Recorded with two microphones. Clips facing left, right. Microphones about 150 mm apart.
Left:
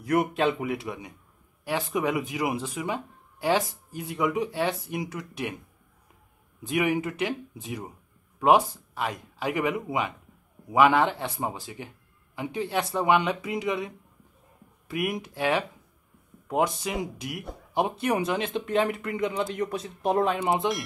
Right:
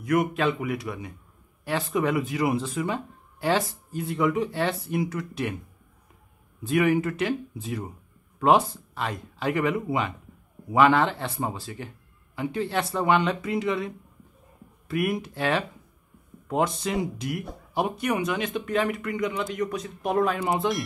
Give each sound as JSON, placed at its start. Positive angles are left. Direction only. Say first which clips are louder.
{"t": 0.0, "sound": "speech", "louder": "even", "side_deg": 30}
{"t": 6.6, "sound": "speech", "louder": "right 3 dB", "side_deg": 15}
{"t": 17.7, "sound": "speech", "louder": "even", "side_deg": 25}